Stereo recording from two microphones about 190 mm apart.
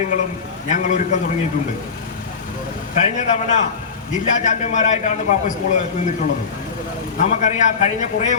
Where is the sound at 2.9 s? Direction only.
40° left (ahead or behind).